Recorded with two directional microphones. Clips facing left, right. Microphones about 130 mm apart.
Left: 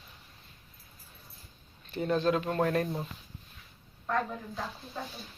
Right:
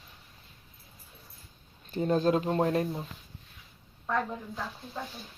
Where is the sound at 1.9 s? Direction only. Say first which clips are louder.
Right 2 dB; 40° right (ahead or behind).